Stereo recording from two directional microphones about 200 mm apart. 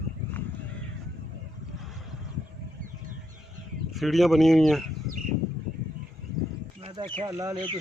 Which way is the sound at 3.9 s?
Centre (ahead or behind).